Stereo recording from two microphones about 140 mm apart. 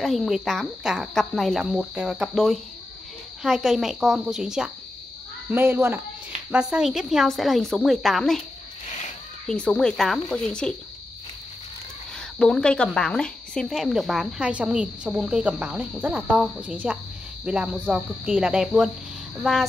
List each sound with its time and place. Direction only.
0.0 s a woman's voice: centre (ahead or behind)
5.5 s cricket: 15° right (ahead or behind)
6.5 s a woman's voice: 5° right (ahead or behind)
9.5 s a woman's voice: 5° left (ahead or behind)
12.2 s a woman's voice: 5° left (ahead or behind); by 16.2 s 10° right (ahead or behind)
16.3 s cricket: 5° right (ahead or behind)